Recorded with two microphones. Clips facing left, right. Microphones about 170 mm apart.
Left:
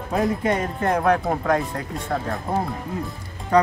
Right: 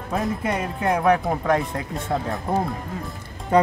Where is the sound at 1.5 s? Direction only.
20° right (ahead or behind).